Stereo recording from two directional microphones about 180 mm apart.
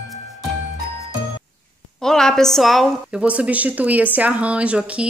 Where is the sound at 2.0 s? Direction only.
5° left (ahead or behind).